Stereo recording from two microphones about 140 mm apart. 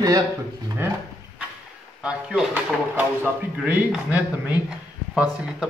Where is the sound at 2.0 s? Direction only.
5° right (ahead or behind).